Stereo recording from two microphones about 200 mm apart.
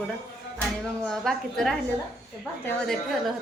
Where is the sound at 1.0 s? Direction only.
Centre (ahead or behind).